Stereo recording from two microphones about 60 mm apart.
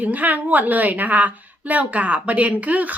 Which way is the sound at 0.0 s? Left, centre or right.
Right.